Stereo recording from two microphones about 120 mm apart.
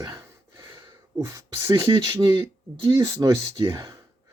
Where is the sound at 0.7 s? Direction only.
40° right (ahead or behind).